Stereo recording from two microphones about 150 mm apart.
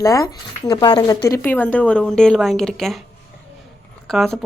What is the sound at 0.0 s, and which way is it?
Speech, 20° left (ahead or behind).